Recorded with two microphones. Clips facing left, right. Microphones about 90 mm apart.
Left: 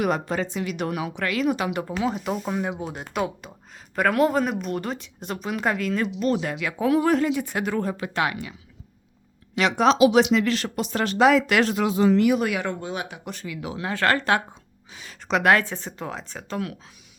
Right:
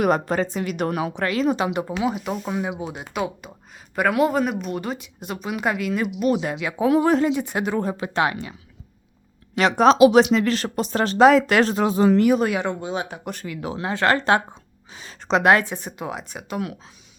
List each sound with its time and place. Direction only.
0.0 s speech: 45° right (ahead or behind); by 1.9 s 20° right (ahead or behind)
1.9 s speech: 5° right (ahead or behind); by 8.5 s 30° right (ahead or behind)
9.6 s speech: 40° right (ahead or behind); by 13.1 s 20° right (ahead or behind)
13.1 s speech: 45° right (ahead or behind)
13.9 s a woman's voice: 20° right (ahead or behind)